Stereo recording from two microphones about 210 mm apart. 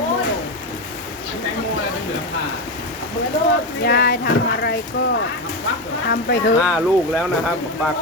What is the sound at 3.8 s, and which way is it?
Speech, 50° left (ahead or behind).